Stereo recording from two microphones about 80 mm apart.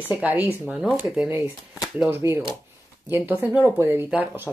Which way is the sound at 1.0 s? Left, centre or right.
Right.